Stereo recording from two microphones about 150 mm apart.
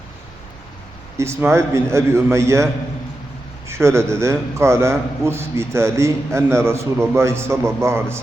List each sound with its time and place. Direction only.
1.2 s a man's voice: 15° right (ahead or behind)
3.7 s a man's voice: 20° right (ahead or behind)